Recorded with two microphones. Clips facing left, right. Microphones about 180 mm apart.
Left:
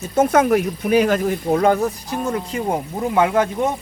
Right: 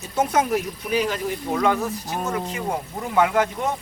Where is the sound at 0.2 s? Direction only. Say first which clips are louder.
Left 6 dB; 55° left (ahead or behind).